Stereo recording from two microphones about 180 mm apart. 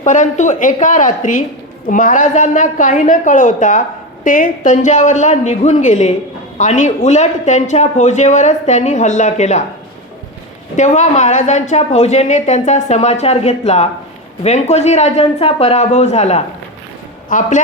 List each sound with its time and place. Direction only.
0.0 s a woman's voice: 45° left (ahead or behind)
10.8 s a man's voice: 40° left (ahead or behind)